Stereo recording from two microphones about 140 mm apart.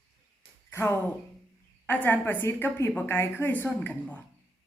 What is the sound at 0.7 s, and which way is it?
A woman's voice, 15° left (ahead or behind).